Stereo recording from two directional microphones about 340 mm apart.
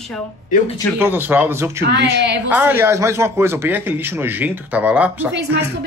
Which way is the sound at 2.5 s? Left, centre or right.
Centre.